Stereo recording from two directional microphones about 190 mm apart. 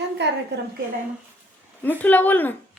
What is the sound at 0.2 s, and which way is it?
Speech, 65° right (ahead or behind).